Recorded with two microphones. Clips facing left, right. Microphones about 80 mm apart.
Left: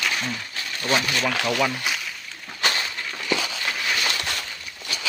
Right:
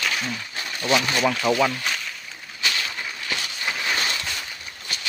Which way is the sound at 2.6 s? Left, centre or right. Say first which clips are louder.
Left 2 dB; left.